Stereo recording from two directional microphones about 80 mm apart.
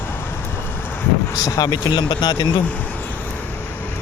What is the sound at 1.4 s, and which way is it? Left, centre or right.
Speech, left.